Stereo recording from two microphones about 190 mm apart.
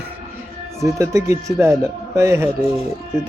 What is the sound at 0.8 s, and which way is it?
Speech, 15° right (ahead or behind).